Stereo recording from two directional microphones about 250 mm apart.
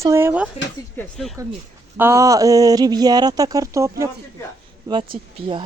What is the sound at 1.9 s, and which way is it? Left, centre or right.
Speech, centre.